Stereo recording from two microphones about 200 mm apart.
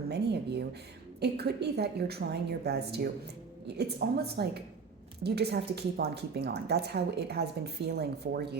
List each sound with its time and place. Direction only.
0.1 s a woman's voice: 55° right (ahead or behind)